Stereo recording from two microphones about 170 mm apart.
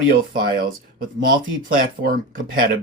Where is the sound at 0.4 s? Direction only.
60° right (ahead or behind).